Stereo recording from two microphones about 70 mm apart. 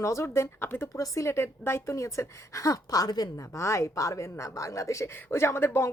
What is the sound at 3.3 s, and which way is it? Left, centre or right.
Speech, left.